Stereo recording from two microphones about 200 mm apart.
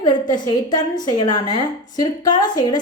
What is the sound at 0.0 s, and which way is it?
A woman's voice, 20° left (ahead or behind).